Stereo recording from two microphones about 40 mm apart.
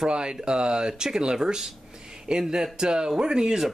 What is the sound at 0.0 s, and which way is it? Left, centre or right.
Speech, right.